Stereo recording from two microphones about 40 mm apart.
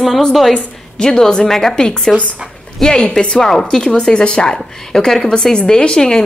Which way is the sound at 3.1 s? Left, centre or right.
Centre.